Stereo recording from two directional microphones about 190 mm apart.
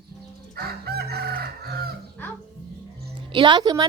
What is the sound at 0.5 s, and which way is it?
Chicken, 55° right (ahead or behind).